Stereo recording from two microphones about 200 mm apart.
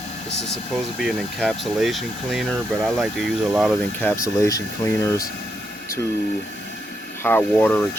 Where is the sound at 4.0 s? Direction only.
15° left (ahead or behind).